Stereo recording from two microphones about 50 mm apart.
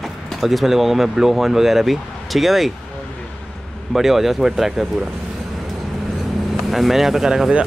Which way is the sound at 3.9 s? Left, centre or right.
Centre.